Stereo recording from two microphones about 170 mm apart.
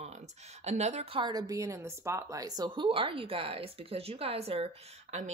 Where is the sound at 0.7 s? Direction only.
40° right (ahead or behind).